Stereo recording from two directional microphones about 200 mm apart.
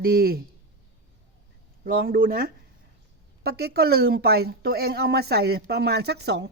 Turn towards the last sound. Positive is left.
turn(degrees=-55)  # may be behind; listen again after turning